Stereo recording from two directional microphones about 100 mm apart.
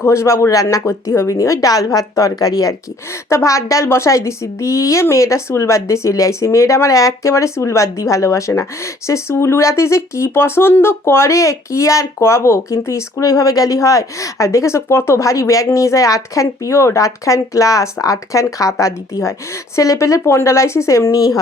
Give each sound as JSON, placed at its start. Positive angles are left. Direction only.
{"t": 0.0, "sound": "speech", "side_deg": 30}